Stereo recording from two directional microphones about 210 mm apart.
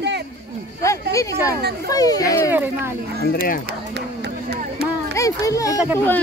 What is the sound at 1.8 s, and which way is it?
Speech, 15° left (ahead or behind).